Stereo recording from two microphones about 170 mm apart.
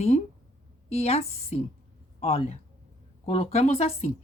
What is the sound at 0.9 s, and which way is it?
Speech, 35° left (ahead or behind).